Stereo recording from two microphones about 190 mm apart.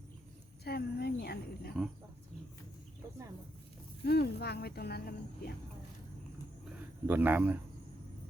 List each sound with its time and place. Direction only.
0.6 s speech: 55° left (ahead or behind)
4.0 s speech: 60° left (ahead or behind)
7.1 s speech: 10° right (ahead or behind)